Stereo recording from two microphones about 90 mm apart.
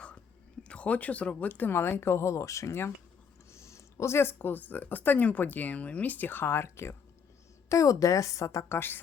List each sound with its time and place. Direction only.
0.7 s a woman's voice: 15° left (ahead or behind)